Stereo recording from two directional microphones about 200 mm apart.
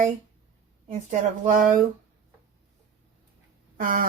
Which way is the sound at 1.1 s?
40° right (ahead or behind).